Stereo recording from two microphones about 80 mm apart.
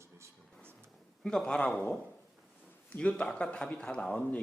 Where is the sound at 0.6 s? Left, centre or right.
Right.